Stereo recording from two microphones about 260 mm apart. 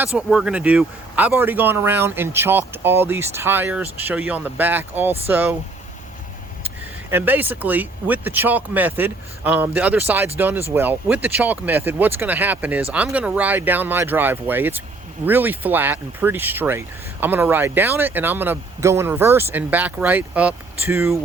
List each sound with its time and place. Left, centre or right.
0.0 s speech: centre
7.1 s speech: centre